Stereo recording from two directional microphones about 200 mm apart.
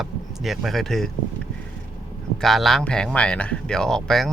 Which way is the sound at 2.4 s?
Centre (ahead or behind).